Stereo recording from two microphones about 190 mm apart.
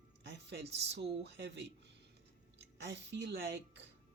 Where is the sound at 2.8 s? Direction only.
65° right (ahead or behind).